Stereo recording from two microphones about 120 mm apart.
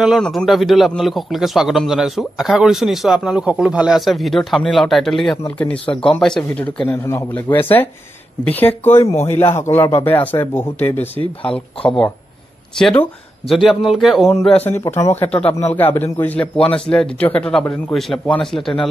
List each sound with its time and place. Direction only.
0.0 s a man's voice: centre (ahead or behind)
14.7 s speech: 20° left (ahead or behind)
16.5 s speech: 50° left (ahead or behind)
16.9 s a man's voice: 10° left (ahead or behind)